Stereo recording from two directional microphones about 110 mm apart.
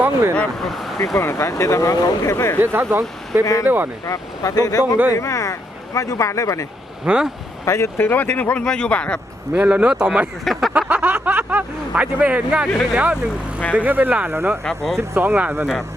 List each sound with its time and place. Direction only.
0.0 s vehicle: 25° right (ahead or behind)
0.3 s speech: centre (ahead or behind)
1.1 s speech: 25° left (ahead or behind)
2.6 s speech: 20° right (ahead or behind)
3.4 s speech: 30° left (ahead or behind)
7.0 s speech: 10° right (ahead or behind)
7.6 s speech: 30° left (ahead or behind); by 9.2 s 10° left (ahead or behind)
9.6 s speech: 10° right (ahead or behind)
10.8 s speech: 10° right (ahead or behind)
14.6 s speech: 5° left (ahead or behind)
15.1 s speech: 20° right (ahead or behind)